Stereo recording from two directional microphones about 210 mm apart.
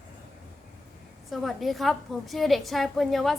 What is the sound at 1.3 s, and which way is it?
A woman's voice, centre (ahead or behind).